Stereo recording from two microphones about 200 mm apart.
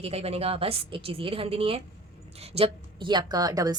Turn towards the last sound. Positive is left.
turn(degrees=-20)  # may be behind; listen again after turning